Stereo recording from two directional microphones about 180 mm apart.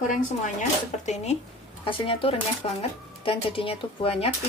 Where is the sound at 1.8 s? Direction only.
30° left (ahead or behind).